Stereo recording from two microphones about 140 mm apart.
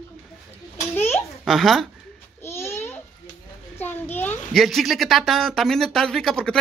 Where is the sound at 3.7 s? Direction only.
15° left (ahead or behind).